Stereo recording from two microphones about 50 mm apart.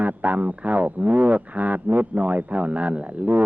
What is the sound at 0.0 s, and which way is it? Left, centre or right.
Speech, right.